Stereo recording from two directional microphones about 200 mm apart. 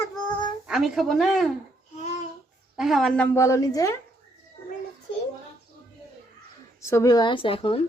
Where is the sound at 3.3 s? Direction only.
15° left (ahead or behind).